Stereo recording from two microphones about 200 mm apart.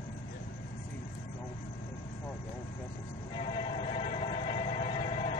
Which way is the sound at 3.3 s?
25° left (ahead or behind).